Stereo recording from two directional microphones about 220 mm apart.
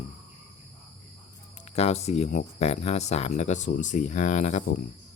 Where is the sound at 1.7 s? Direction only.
30° left (ahead or behind).